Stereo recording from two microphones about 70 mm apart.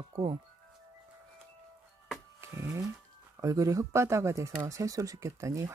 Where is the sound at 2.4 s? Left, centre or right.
Right.